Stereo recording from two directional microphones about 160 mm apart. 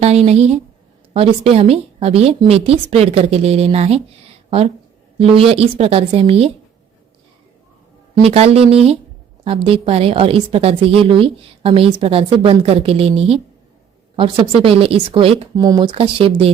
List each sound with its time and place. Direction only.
0.0 s a woman's voice: 40° right (ahead or behind)
8.2 s a woman's voice: 40° right (ahead or behind)
15.5 s a woman's voice: 25° right (ahead or behind)